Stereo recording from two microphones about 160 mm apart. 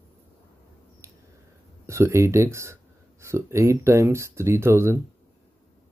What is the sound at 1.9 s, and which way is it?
Speech, 20° right (ahead or behind).